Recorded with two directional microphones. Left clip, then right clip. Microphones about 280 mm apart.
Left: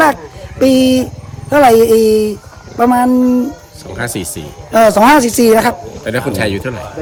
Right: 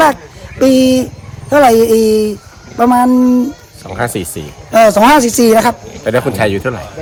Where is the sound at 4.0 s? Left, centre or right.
Centre.